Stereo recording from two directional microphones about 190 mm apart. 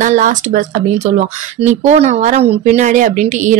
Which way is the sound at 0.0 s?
40° right (ahead or behind).